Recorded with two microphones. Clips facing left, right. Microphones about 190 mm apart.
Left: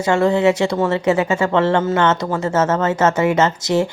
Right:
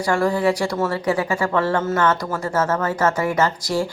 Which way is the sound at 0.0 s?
25° left (ahead or behind).